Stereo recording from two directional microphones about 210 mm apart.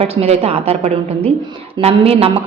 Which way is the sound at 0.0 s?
30° right (ahead or behind).